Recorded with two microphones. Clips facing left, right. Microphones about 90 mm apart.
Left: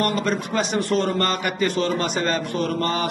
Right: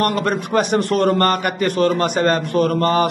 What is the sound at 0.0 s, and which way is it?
A man's voice, 60° right (ahead or behind).